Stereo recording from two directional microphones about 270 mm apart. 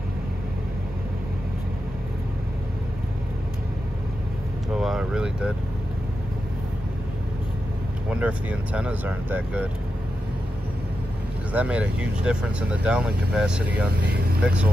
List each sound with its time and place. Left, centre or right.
4.7 s vehicle: centre
8.1 s speech: centre
11.5 s speech: centre
13.9 s speech: right
14.4 s speech: centre